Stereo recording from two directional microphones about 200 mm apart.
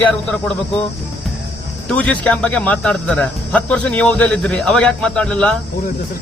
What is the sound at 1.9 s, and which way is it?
Speech, 5° left (ahead or behind).